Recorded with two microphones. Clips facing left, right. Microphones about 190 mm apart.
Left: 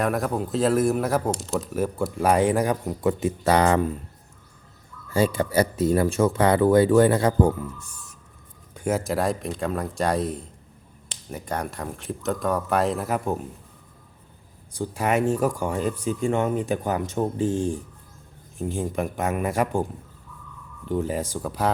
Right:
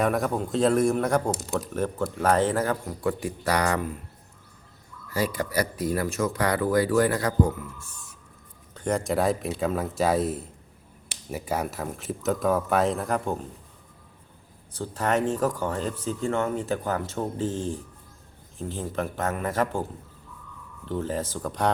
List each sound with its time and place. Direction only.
0.0 s speech: centre (ahead or behind); by 3.9 s 30° left (ahead or behind)
5.0 s speech: 25° left (ahead or behind)
8.7 s speech: 5° left (ahead or behind)
14.7 s speech: 10° left (ahead or behind)